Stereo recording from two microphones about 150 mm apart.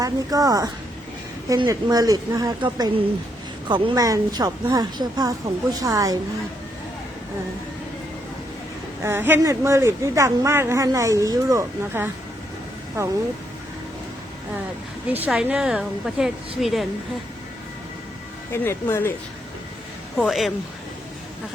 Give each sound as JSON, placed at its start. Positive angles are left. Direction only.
{"t": 0.0, "sound": "speech", "side_deg": -25}
{"t": 9.0, "sound": "speech", "side_deg": -15}
{"t": 15.1, "sound": "a woman's voice", "side_deg": -10}
{"t": 18.5, "sound": "speech", "side_deg": 15}
{"t": 20.1, "sound": "a woman's voice", "side_deg": 0}